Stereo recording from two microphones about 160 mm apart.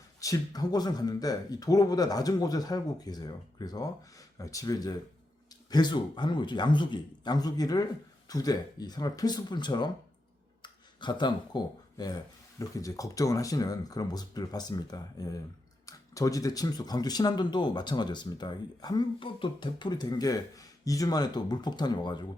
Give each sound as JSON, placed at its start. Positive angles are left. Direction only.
{"t": 0.2, "sound": "speech", "side_deg": 20}